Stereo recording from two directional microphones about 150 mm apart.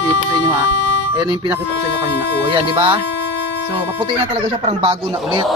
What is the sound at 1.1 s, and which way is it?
Music, 30° right (ahead or behind).